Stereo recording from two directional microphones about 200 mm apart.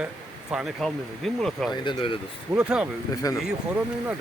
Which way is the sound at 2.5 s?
5° right (ahead or behind).